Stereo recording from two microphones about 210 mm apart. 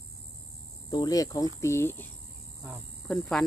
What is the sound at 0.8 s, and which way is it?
Speech, 20° left (ahead or behind).